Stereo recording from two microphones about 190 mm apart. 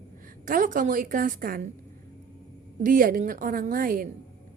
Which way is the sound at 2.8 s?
45° right (ahead or behind).